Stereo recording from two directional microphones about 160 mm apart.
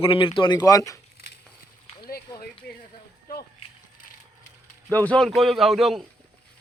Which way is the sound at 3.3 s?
70° left (ahead or behind).